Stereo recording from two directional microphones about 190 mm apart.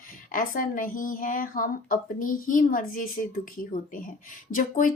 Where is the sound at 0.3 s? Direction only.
45° left (ahead or behind).